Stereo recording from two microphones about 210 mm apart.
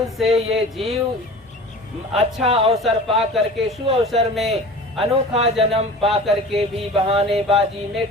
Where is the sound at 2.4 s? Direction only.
30° right (ahead or behind).